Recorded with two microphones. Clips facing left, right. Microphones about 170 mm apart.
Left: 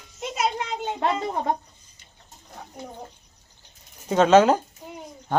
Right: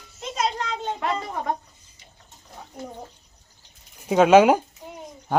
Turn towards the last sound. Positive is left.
turn(degrees=-10)  # may be behind; listen again after turning